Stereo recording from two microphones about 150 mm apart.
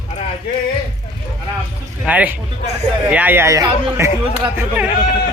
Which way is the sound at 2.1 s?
10° right (ahead or behind).